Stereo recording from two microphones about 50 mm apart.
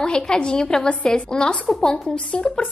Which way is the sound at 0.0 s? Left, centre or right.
Centre.